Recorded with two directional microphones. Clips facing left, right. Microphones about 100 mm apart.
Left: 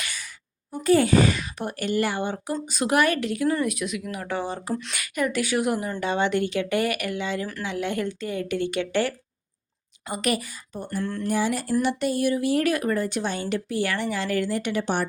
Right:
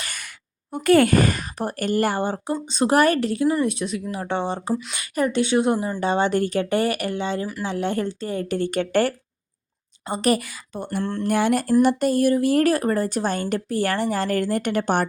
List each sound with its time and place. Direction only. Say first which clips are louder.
0.7 s a woman's voice: right 3 dB; 65° right (ahead or behind); by 9.1 s 45° right (ahead or behind)
10.1 s a woman's voice: right 5 dB; 35° right (ahead or behind)
11.3 s speech: right 5 dB; 60° right (ahead or behind)
11.8 s a woman's voice: right 5 dB; 45° right (ahead or behind)